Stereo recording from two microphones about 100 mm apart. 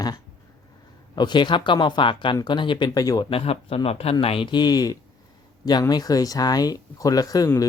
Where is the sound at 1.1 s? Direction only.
50° left (ahead or behind).